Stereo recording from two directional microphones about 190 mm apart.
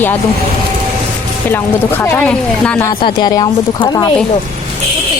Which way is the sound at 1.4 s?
10° left (ahead or behind).